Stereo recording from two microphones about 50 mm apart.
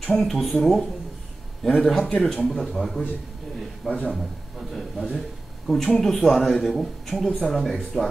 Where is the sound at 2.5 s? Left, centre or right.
Centre.